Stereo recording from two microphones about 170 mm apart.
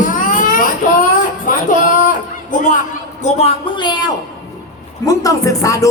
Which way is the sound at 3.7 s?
25° left (ahead or behind).